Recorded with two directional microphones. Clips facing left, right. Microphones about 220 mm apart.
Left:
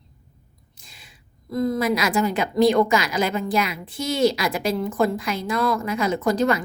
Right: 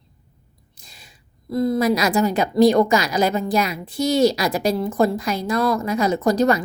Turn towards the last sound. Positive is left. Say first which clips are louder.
# right 3 dB
turn(degrees=-40)  # may be behind; listen again after turning